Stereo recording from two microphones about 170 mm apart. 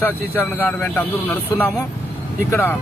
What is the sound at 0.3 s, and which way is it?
Speech, 10° left (ahead or behind).